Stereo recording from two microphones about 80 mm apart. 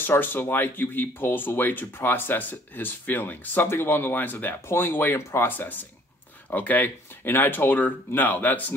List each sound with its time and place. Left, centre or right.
0.0 s speech: left